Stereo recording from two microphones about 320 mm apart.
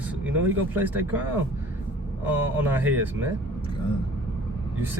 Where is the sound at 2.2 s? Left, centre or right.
Centre.